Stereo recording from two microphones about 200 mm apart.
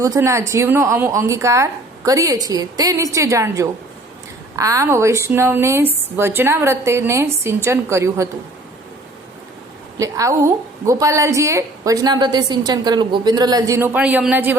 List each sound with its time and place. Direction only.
0.0 s a woman's voice: 15° right (ahead or behind)
10.0 s a woman's voice: 15° right (ahead or behind)